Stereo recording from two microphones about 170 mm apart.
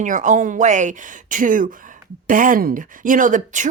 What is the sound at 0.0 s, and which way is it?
Speech, 45° right (ahead or behind).